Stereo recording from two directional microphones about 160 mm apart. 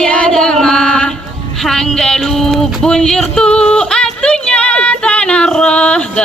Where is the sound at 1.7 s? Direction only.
5° left (ahead or behind).